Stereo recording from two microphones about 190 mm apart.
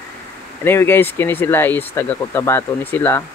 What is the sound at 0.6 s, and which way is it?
Speech, 10° left (ahead or behind).